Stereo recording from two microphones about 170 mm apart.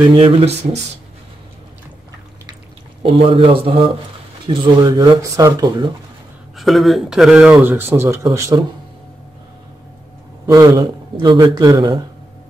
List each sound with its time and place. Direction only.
0.1 s a man's voice: 30° right (ahead or behind)
3.0 s a man's voice: 30° right (ahead or behind)
6.5 s speech: centre (ahead or behind); by 8.6 s 20° right (ahead or behind)
10.4 s speech: 20° right (ahead or behind)